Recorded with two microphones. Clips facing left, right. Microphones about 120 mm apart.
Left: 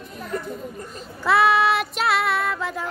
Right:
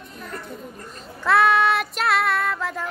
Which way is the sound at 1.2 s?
Centre (ahead or behind).